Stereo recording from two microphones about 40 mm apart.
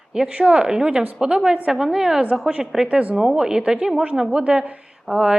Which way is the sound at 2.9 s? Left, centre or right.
Right.